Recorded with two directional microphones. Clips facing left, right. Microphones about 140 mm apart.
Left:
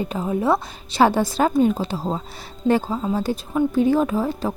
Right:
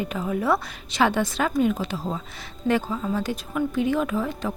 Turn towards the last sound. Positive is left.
turn(degrees=35)  # may be behind; listen again after turning